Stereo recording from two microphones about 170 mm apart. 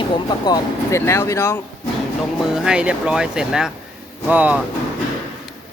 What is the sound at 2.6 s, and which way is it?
Speech, 5° right (ahead or behind).